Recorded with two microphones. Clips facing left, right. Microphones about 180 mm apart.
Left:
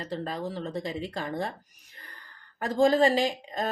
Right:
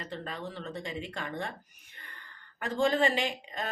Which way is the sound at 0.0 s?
35° left (ahead or behind).